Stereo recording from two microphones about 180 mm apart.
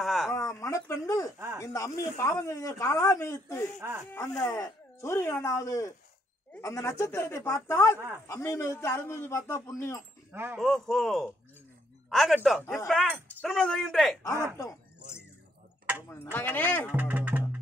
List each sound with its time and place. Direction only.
0.0 s a sound: centre (ahead or behind)
0.3 s speech: 15° left (ahead or behind)
10.3 s speech: 10° right (ahead or behind)
10.6 s speech: centre (ahead or behind)
14.3 s speech: 15° right (ahead or behind)
14.6 s a sound: 15° left (ahead or behind)
16.1 s speech: 10° left (ahead or behind)
16.9 s music: 10° right (ahead or behind)